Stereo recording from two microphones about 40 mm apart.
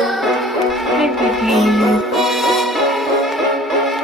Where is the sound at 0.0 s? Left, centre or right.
Centre.